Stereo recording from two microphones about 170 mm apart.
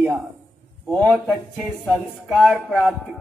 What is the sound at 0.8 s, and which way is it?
Speech, 5° left (ahead or behind).